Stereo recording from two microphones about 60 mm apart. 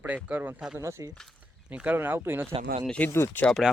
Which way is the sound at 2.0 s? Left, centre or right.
Right.